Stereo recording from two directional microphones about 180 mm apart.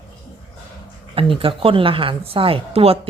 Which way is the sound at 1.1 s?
30° right (ahead or behind).